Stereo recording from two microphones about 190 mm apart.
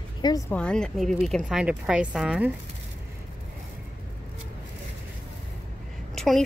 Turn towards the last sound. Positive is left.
turn(degrees=0)  # may be behind; listen again after turning